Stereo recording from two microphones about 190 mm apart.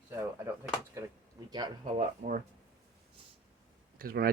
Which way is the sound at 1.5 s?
20° right (ahead or behind).